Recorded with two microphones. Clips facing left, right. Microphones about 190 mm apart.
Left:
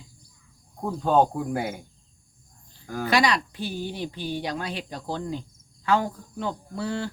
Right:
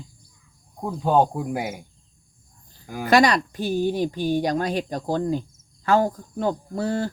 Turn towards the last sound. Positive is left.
turn(degrees=-40)  # may be behind; listen again after turning